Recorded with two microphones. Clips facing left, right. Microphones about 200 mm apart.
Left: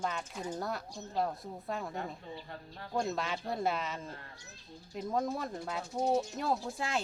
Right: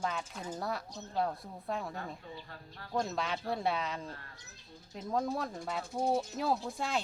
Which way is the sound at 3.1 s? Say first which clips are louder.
Even; centre (ahead or behind).